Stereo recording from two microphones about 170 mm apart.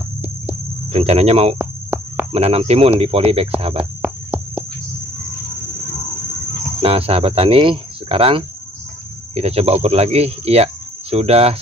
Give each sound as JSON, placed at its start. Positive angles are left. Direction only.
{"t": 0.9, "sound": "speech", "side_deg": -40}
{"t": 1.6, "sound": "cricket", "side_deg": -10}
{"t": 2.3, "sound": "speech", "side_deg": -35}
{"t": 3.7, "sound": "cricket", "side_deg": -5}
{"t": 6.8, "sound": "speech", "side_deg": -35}